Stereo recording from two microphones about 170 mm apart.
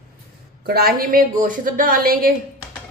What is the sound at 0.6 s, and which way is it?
A woman's voice, 65° right (ahead or behind).